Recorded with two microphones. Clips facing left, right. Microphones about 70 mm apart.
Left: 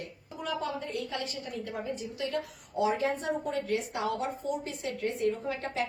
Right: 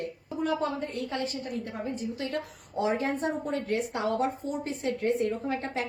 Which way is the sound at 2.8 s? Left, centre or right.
Right.